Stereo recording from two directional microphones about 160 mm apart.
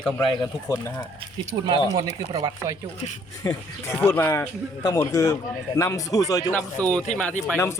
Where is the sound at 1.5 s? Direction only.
30° right (ahead or behind).